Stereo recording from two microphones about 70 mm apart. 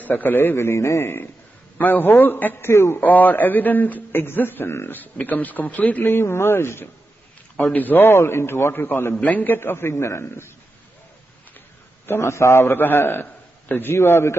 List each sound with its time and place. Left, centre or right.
0.0 s a man's voice: left
1.8 s a man's voice: left
2.7 s a man's voice: left
3.0 s a man's voice: left
7.5 s a man's voice: left
9.1 s a man's voice: left
12.1 s a man's voice: left
13.9 s a man's voice: left